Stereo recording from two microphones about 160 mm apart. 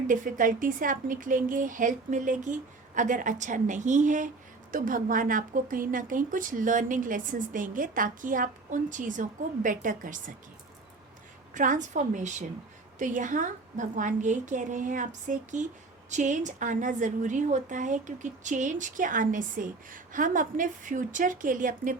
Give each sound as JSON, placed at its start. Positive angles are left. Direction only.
{"t": 0.1, "sound": "a woman's voice", "side_deg": -55}
{"t": 11.5, "sound": "a woman's voice", "side_deg": -55}